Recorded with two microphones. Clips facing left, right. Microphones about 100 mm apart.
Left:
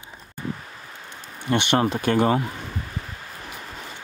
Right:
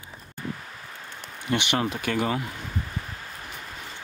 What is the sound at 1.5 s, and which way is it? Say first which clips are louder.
Speech: left 5 dB; 35° left (ahead or behind).